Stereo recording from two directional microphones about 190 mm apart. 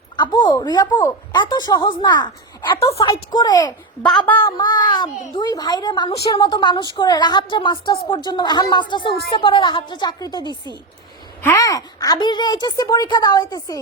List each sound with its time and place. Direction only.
0.2 s a woman's voice: 20° left (ahead or behind)
10.4 s a woman's voice: 20° right (ahead or behind)
11.4 s a woman's voice: 20° left (ahead or behind)